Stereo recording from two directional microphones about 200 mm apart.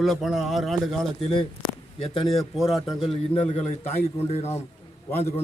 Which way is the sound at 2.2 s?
Centre (ahead or behind).